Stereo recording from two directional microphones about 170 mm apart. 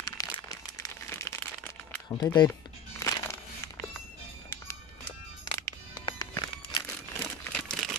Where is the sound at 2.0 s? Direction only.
25° left (ahead or behind).